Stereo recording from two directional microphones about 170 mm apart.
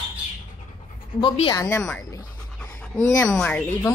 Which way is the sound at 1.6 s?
15° left (ahead or behind).